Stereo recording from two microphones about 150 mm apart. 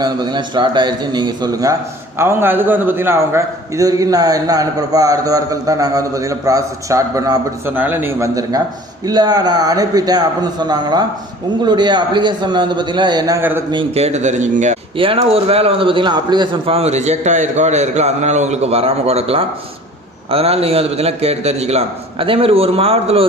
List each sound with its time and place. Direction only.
0.0 s a man's voice: 30° right (ahead or behind)
13.4 s speech: 15° right (ahead or behind)
13.7 s a man's voice: 30° right (ahead or behind)
14.0 s a man's voice: 50° right (ahead or behind)
14.9 s a man's voice: 35° right (ahead or behind)